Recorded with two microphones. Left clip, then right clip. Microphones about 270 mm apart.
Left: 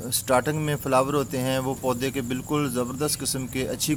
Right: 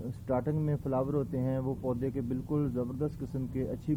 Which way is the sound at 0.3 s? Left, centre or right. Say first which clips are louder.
Left 9 dB; centre.